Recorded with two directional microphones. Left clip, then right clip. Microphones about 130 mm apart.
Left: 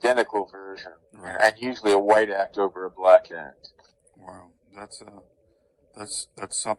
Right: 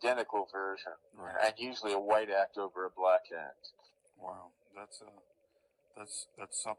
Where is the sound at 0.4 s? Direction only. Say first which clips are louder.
Even; 15° left (ahead or behind).